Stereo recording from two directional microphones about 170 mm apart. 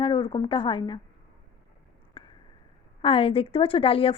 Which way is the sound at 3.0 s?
35° left (ahead or behind).